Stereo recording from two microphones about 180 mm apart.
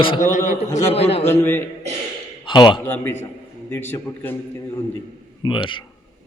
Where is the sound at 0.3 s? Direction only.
45° left (ahead or behind).